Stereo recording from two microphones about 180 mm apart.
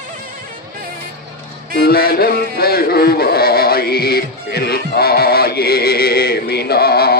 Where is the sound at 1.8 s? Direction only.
60° left (ahead or behind).